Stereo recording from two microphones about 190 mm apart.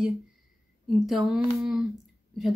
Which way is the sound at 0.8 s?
Centre (ahead or behind).